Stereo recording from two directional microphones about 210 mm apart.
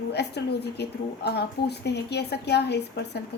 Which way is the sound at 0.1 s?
50° left (ahead or behind).